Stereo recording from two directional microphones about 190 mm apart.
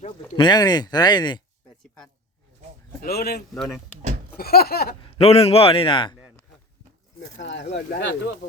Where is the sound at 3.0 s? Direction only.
55° left (ahead or behind).